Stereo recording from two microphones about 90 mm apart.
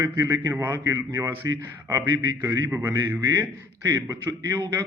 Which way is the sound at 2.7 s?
35° right (ahead or behind).